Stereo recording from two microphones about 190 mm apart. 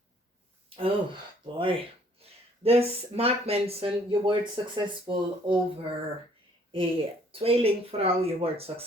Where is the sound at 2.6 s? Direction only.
30° right (ahead or behind).